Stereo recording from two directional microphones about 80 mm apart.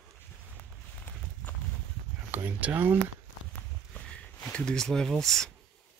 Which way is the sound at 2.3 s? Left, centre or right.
Right.